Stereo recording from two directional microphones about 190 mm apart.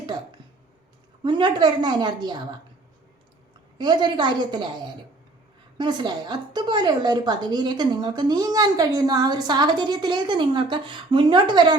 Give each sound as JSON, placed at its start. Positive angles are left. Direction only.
{"t": 1.2, "sound": "a woman's voice", "side_deg": -25}
{"t": 3.8, "sound": "a woman's voice", "side_deg": -25}
{"t": 5.7, "sound": "a woman's voice", "side_deg": -25}